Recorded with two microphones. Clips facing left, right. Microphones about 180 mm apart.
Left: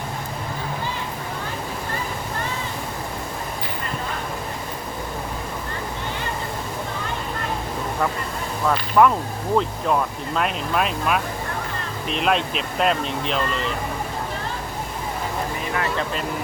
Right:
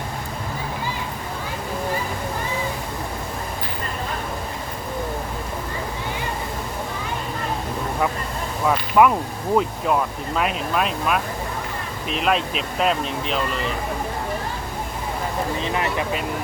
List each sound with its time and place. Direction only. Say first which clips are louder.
8.6 s a sound: even; 5° right (ahead or behind)
9.6 s speech: right 1 dB; 5° right (ahead or behind)
15.6 s speech: left 1 dB; 20° right (ahead or behind)